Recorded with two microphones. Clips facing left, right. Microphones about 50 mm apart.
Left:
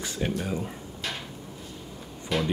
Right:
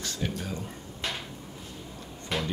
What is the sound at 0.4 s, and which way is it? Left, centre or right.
Speech, centre.